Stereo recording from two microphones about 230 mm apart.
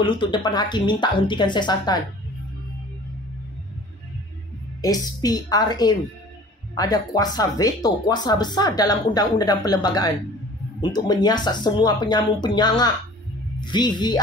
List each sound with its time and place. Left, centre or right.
0.0 s speech: left
4.8 s speech: centre